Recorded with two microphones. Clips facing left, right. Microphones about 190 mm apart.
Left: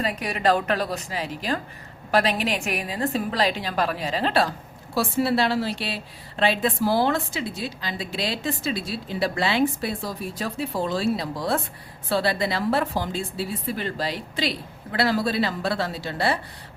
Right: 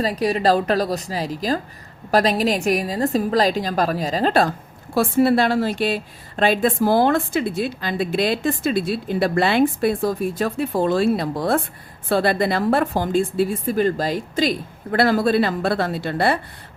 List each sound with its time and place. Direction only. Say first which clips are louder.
0.0 s a woman's voice: right 5 dB; 35° right (ahead or behind); by 16.4 s 55° right (ahead or behind)